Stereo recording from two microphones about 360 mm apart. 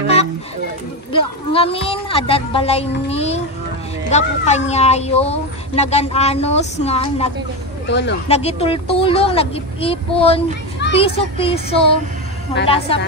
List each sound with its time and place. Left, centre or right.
1.1 s speech: centre
7.9 s speech: left
8.3 s speech: centre